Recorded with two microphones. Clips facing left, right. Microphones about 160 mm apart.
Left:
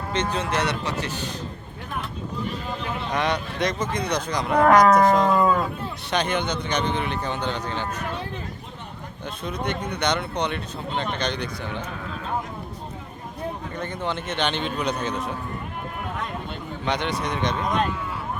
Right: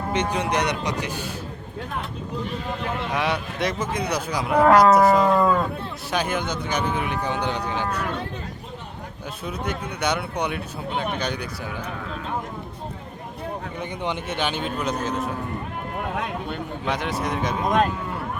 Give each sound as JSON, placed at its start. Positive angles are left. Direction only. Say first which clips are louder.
{"t": 0.1, "sound": "speech", "louder": "right 1 dB", "side_deg": -10}
{"t": 3.1, "sound": "speech", "louder": "left 2 dB", "side_deg": -5}
{"t": 9.4, "sound": "speech", "louder": "left 1 dB", "side_deg": -10}
{"t": 13.7, "sound": "speech", "louder": "even", "side_deg": -15}
{"t": 16.8, "sound": "speech", "louder": "left 1 dB", "side_deg": -5}
{"t": 17.7, "sound": "speech", "louder": "right 3 dB", "side_deg": -45}